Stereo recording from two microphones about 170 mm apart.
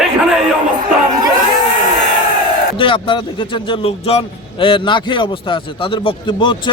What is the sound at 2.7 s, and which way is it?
A man's voice, 30° left (ahead or behind).